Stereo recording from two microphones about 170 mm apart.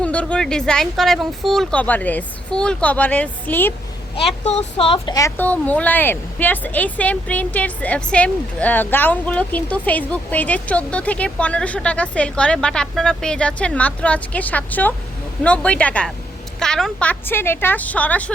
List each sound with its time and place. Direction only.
0.0 s speech: 5° left (ahead or behind)
4.1 s speech: 35° left (ahead or behind)
5.4 s speech: 10° left (ahead or behind)